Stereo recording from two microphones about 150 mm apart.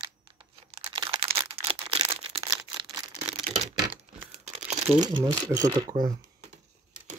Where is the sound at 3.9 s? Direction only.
45° right (ahead or behind).